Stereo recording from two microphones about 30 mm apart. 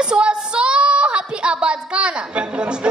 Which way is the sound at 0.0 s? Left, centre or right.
Right.